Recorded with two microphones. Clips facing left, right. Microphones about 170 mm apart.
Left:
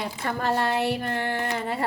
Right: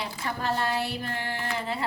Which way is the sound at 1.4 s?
50° left (ahead or behind).